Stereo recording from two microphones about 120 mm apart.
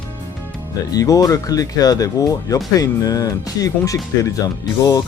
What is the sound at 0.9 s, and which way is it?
Speech, 30° left (ahead or behind).